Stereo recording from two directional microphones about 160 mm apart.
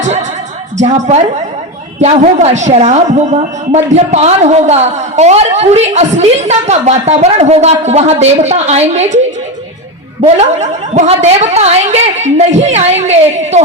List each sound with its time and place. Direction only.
0.8 s a woman's voice: 45° right (ahead or behind)
10.3 s a woman's voice: 45° right (ahead or behind)